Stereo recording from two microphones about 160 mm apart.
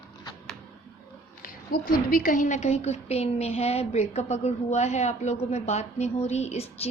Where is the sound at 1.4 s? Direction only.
60° left (ahead or behind).